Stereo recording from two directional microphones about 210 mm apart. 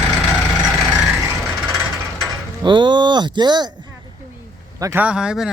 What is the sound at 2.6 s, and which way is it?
Speech, 20° right (ahead or behind).